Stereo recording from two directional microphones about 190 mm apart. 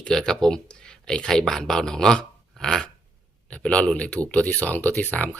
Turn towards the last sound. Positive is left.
turn(degrees=5)  # may be behind; listen again after turning